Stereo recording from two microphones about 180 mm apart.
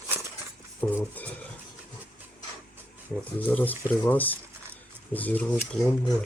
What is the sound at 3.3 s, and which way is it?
Speech, 10° left (ahead or behind).